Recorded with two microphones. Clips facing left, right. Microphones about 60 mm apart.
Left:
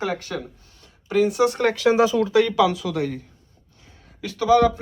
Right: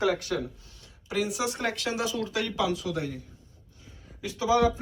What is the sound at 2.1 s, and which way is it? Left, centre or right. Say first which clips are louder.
Speech: left 11 dB; left.